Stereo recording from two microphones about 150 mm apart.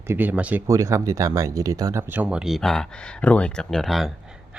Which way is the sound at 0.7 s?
20° right (ahead or behind).